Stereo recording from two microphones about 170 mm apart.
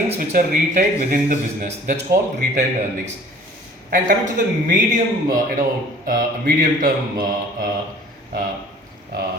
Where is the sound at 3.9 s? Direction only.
50° right (ahead or behind).